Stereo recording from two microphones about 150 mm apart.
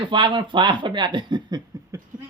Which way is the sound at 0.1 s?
30° right (ahead or behind).